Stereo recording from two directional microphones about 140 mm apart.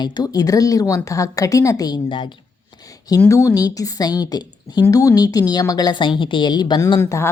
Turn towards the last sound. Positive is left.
turn(degrees=20)  # may be behind; listen again after turning